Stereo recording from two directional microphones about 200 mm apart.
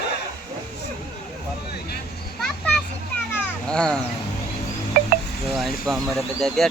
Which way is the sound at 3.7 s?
5° left (ahead or behind).